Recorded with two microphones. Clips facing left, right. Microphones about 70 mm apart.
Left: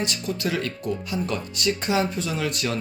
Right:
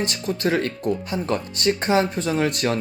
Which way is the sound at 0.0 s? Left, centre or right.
Right.